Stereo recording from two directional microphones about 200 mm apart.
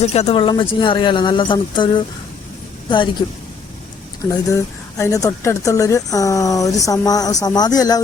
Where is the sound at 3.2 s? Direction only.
25° left (ahead or behind).